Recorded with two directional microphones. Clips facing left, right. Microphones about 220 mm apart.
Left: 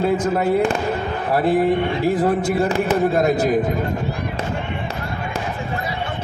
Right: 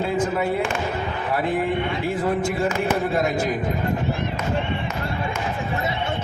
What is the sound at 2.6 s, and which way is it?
Speech, 35° left (ahead or behind).